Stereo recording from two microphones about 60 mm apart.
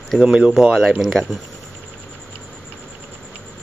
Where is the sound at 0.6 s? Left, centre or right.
Centre.